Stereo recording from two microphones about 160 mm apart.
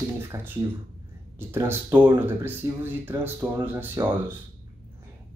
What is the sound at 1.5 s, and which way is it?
Speech, 15° right (ahead or behind).